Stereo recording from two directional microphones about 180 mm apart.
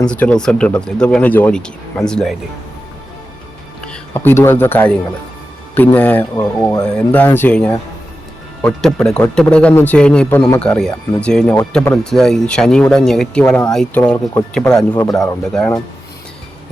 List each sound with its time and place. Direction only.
0.1 s speech: 5° left (ahead or behind)
3.8 s speech: 10° left (ahead or behind)
14.8 s speech: 20° left (ahead or behind)
15.5 s speech: 5° left (ahead or behind)